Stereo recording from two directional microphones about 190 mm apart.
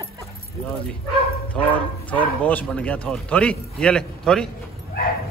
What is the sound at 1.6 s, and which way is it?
Speech, 5° left (ahead or behind).